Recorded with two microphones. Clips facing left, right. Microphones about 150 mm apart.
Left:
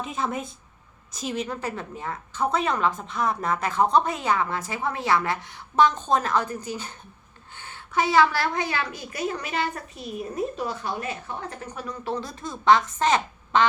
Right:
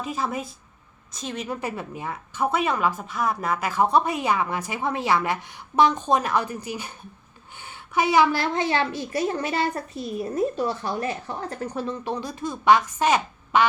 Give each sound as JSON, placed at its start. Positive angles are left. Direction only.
{"t": 0.0, "sound": "speech", "side_deg": 0}
{"t": 1.5, "sound": "a woman's voice", "side_deg": -10}
{"t": 12.0, "sound": "a woman's voice", "side_deg": -15}